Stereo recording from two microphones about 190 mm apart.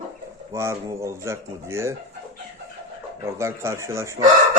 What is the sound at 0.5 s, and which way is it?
A man's voice, 15° right (ahead or behind).